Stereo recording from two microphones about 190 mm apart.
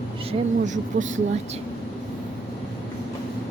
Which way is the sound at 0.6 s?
40° right (ahead or behind).